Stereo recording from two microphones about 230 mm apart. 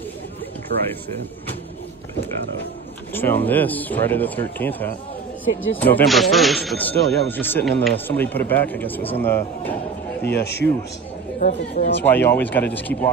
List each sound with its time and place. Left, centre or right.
0.7 s speech: right
3.2 s speech: centre
10.2 s speech: left
11.3 s speech: left
12.0 s speech: centre